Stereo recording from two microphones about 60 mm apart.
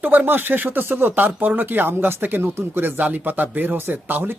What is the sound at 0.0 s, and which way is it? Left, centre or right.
Speech, right.